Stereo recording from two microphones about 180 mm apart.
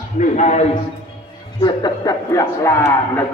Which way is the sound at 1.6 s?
20° left (ahead or behind).